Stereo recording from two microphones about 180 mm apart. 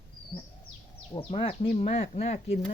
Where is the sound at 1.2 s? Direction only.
30° left (ahead or behind).